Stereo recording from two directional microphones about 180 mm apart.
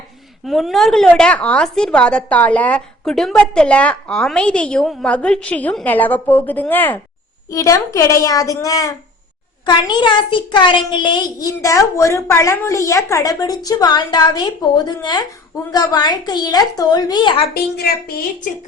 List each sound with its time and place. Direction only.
0.4 s a woman's voice: centre (ahead or behind); by 17.4 s 25° left (ahead or behind)
17.5 s a woman's voice: 55° left (ahead or behind)